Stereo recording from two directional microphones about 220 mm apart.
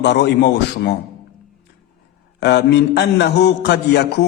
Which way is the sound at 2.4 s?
50° left (ahead or behind).